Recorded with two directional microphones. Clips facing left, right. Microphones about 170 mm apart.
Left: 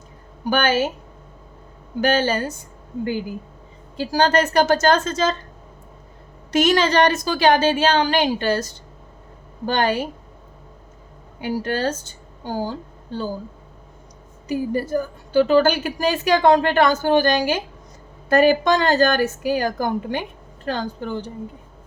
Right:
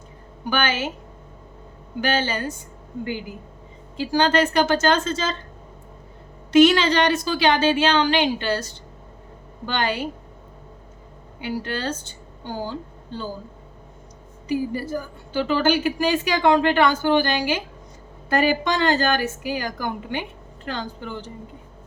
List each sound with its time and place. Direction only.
0.5 s speech: 40° left (ahead or behind)
2.0 s a woman's voice: 45° left (ahead or behind)
4.2 s a woman's voice: 40° left (ahead or behind)
6.5 s a woman's voice: 45° left (ahead or behind)
9.6 s a woman's voice: 45° left (ahead or behind)
11.3 s a woman's voice: 45° left (ahead or behind)
14.4 s a woman's voice: 45° left (ahead or behind)